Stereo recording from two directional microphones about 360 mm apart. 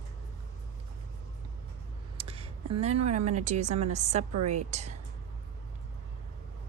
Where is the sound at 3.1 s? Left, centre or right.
Centre.